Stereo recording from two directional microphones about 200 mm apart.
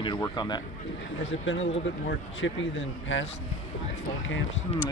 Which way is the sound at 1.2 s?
70° left (ahead or behind).